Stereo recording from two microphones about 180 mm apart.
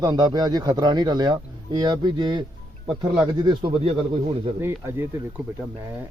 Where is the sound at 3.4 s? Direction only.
30° right (ahead or behind).